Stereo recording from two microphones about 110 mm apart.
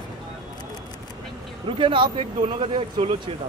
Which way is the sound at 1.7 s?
50° right (ahead or behind).